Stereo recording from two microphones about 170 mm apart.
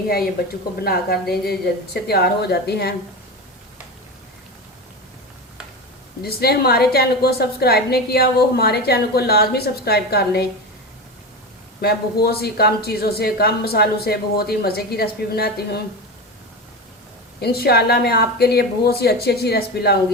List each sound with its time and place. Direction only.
1.3 s a woman's voice: 70° left (ahead or behind)
6.2 s a woman's voice: 65° left (ahead or behind)
11.8 s a woman's voice: 70° left (ahead or behind)
17.4 s a woman's voice: 65° left (ahead or behind)